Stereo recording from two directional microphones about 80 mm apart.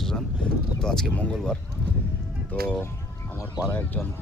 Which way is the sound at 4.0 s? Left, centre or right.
Centre.